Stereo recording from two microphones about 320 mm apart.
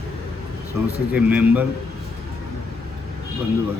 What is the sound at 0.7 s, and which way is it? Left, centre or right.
Speech, centre.